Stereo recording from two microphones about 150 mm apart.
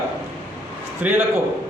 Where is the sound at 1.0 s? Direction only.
10° right (ahead or behind).